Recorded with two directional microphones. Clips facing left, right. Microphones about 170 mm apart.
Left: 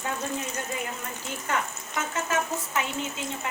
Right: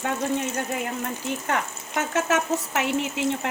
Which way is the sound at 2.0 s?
70° right (ahead or behind).